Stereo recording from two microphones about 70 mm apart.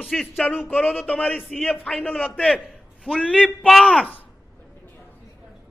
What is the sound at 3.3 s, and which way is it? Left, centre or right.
Speech, centre.